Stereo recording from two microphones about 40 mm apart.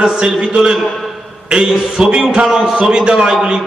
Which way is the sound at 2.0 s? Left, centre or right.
Right.